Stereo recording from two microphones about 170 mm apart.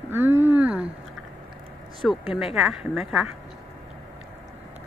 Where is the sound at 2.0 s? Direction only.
5° right (ahead or behind).